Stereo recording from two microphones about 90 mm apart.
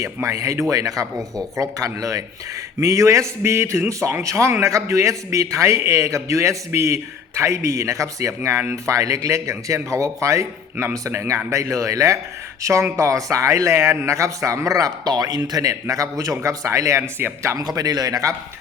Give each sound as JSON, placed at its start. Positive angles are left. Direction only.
{"t": 0.0, "sound": "a man's voice", "side_deg": -35}
{"t": 17.6, "sound": "a man's voice", "side_deg": -45}